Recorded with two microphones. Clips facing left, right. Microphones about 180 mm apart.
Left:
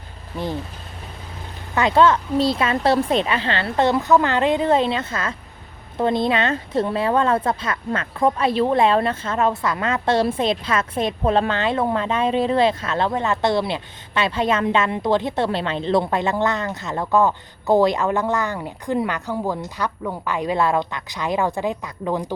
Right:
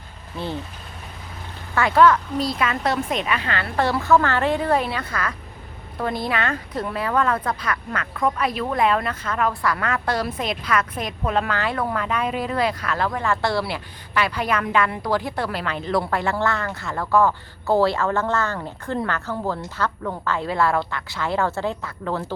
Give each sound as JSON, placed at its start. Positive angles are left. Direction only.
{"t": 1.7, "sound": "speech", "side_deg": 20}